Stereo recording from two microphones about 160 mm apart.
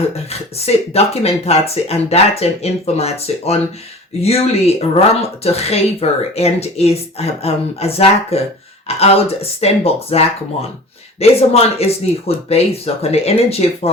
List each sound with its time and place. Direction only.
0.3 s speech: 40° left (ahead or behind)